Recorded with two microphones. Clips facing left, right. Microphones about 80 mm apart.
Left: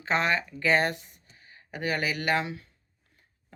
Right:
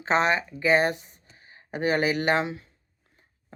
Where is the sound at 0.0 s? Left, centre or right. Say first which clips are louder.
Right 3 dB; right.